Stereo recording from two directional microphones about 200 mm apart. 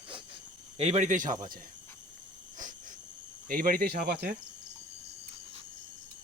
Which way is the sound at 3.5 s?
45° right (ahead or behind).